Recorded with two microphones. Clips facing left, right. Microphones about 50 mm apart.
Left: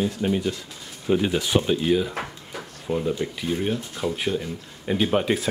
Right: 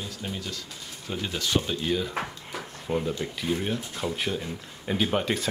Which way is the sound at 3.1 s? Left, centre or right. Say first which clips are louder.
Left 3 dB; centre.